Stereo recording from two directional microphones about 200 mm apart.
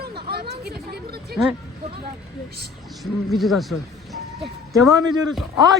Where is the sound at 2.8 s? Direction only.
Centre (ahead or behind).